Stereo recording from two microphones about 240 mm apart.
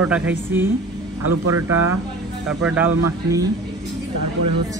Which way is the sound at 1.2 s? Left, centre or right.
Right.